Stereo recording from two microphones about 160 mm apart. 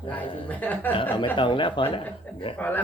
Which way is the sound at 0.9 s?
30° left (ahead or behind).